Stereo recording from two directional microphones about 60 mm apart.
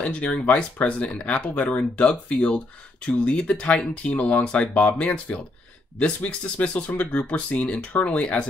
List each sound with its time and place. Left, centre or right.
0.0 s speech: centre